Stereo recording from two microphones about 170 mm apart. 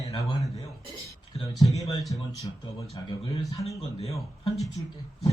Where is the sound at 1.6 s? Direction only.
20° left (ahead or behind).